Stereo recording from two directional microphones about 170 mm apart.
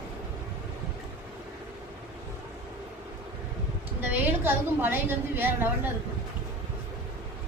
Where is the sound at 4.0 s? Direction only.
10° right (ahead or behind).